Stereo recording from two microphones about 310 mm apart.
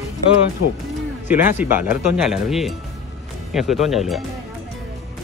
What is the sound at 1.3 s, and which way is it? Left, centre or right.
Speech, centre.